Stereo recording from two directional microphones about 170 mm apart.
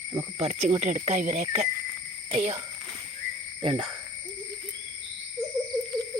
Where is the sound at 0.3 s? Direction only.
35° right (ahead or behind).